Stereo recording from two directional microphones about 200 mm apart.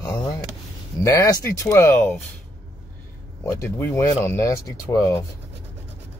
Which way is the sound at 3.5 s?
10° left (ahead or behind).